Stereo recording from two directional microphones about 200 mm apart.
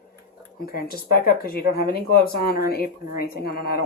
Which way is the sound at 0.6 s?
45° left (ahead or behind).